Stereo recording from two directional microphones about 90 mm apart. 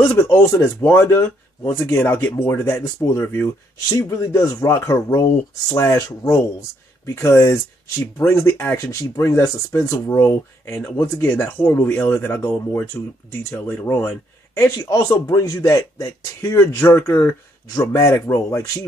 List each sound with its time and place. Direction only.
0.1 s speech: 25° left (ahead or behind)
10.8 s speech: 20° left (ahead or behind)
17.7 s speech: 40° left (ahead or behind)
18.1 s speech: 30° left (ahead or behind)